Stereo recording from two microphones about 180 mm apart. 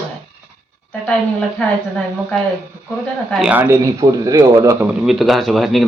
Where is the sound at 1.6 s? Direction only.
5° left (ahead or behind).